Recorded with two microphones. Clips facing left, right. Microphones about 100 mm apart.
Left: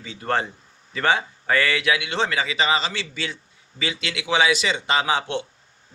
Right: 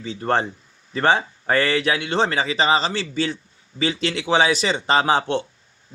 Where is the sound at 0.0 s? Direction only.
30° right (ahead or behind).